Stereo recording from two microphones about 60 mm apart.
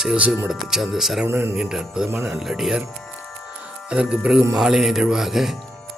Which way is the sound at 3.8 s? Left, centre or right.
Centre.